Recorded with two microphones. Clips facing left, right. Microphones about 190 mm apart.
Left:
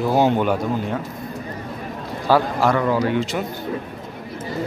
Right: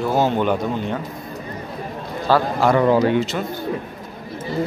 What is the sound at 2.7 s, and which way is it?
Speech, 25° right (ahead or behind).